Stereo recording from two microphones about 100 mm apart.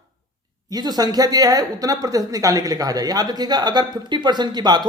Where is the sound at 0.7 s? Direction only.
40° right (ahead or behind).